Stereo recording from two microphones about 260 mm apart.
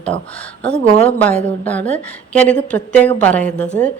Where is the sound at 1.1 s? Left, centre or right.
Centre.